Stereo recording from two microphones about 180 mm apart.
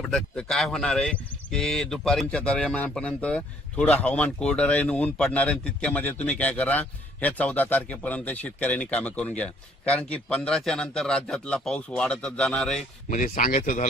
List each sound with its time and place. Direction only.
0.1 s speech: 5° left (ahead or behind)
13.1 s speech: 45° left (ahead or behind)